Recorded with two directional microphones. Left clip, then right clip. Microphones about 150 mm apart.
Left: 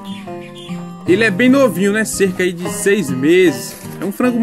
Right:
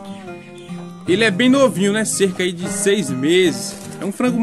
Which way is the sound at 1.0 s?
10° left (ahead or behind).